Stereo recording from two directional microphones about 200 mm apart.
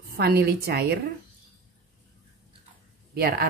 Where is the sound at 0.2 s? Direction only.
50° right (ahead or behind).